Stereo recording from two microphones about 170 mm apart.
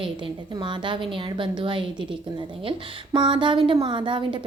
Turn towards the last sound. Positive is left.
turn(degrees=-30)  # may be behind; listen again after turning